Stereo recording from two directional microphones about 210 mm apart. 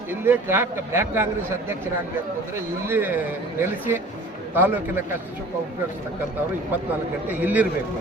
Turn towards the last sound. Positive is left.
turn(degrees=-10)  # may be behind; listen again after turning